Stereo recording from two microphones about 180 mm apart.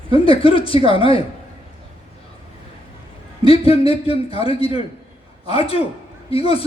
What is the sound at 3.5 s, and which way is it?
Speech, 30° left (ahead or behind).